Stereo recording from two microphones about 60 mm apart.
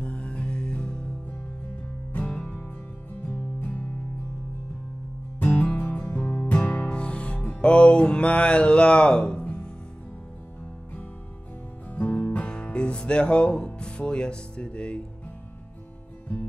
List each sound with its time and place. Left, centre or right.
0.0 s music: centre
2.1 s music: centre
5.4 s music: left
11.9 s music: left